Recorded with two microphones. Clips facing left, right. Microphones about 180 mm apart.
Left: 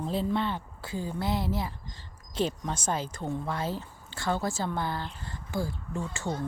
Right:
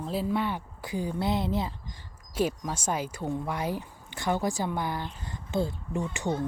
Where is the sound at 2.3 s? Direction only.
10° right (ahead or behind).